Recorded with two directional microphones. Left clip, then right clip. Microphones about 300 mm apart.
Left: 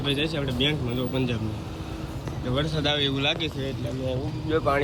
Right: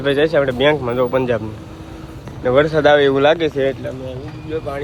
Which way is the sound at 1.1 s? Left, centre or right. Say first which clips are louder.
Right 10 dB; centre.